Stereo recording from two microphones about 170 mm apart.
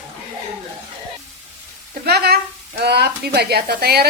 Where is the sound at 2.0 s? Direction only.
70° right (ahead or behind).